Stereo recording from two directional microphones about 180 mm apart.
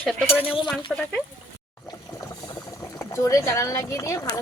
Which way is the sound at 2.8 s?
15° left (ahead or behind).